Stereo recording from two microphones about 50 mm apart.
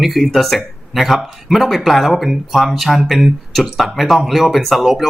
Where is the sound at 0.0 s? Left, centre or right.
Centre.